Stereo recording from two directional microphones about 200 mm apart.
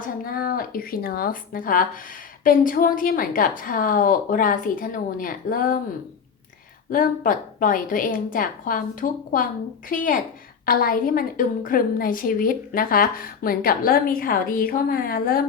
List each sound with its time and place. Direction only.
0.0 s a woman's voice: 45° left (ahead or behind)
6.9 s a woman's voice: 45° left (ahead or behind)